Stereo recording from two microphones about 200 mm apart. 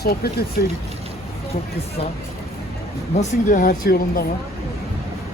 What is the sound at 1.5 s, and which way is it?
Speech, 30° left (ahead or behind).